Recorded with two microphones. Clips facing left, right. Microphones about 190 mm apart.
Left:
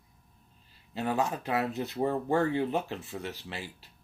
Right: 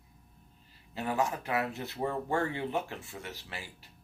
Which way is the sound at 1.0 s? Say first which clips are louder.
Left 2 dB; 20° left (ahead or behind).